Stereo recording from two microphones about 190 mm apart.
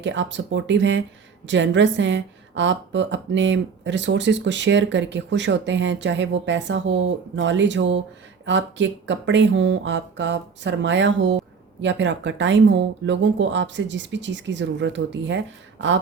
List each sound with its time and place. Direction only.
0.0 s a woman's voice: 70° right (ahead or behind)